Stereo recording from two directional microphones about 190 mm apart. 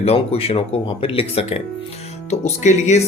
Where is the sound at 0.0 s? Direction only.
30° left (ahead or behind).